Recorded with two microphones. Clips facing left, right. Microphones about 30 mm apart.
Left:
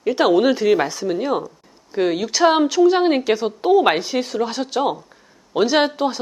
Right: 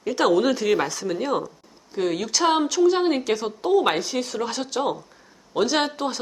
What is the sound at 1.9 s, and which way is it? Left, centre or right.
A woman's voice, centre.